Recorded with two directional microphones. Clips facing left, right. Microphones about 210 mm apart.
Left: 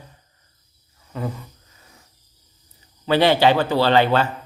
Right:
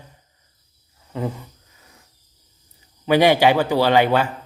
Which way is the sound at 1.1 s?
20° right (ahead or behind).